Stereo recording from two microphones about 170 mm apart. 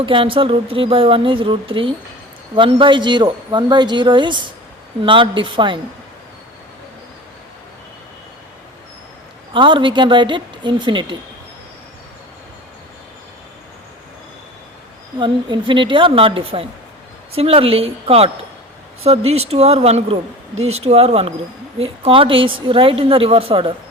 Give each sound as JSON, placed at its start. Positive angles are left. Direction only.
{"t": 0.0, "sound": "a woman's voice", "side_deg": -30}
{"t": 9.5, "sound": "speech", "side_deg": -30}
{"t": 15.2, "sound": "a woman's voice", "side_deg": -25}